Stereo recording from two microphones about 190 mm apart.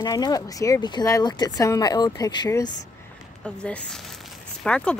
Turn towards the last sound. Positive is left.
turn(degrees=5)  # may be behind; listen again after turning